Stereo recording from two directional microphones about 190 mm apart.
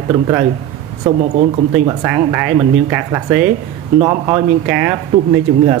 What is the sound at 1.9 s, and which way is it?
Speech, 15° right (ahead or behind).